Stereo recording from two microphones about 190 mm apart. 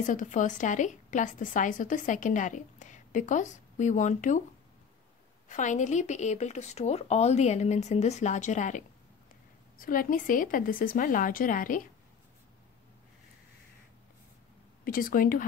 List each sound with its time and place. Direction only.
0.0 s a woman's voice: 40° left (ahead or behind)
5.5 s a woman's voice: 40° left (ahead or behind)
14.9 s speech: 45° left (ahead or behind)